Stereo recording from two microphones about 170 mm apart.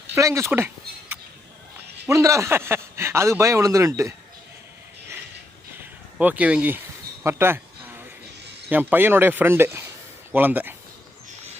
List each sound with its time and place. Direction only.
0.1 s speech: 15° right (ahead or behind)
2.0 s speech: 15° right (ahead or behind)
6.1 s a sound: 10° right (ahead or behind)
8.7 s speech: 10° right (ahead or behind)